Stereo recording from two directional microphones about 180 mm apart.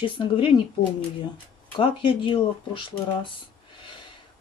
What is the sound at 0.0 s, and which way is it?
Speech, 30° left (ahead or behind).